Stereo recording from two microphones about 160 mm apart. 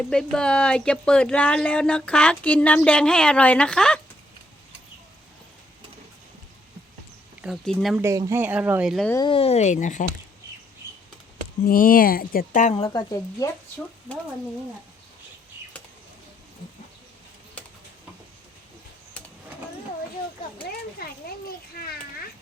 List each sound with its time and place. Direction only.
0.1 s speech: 5° left (ahead or behind)
7.4 s speech: centre (ahead or behind)
7.9 s speech: 15° right (ahead or behind)
9.1 s speech: 30° left (ahead or behind); by 10.1 s 50° left (ahead or behind)
11.6 s speech: 65° left (ahead or behind)
12.9 s speech: 25° left (ahead or behind)
21.0 s children playing: 70° left (ahead or behind)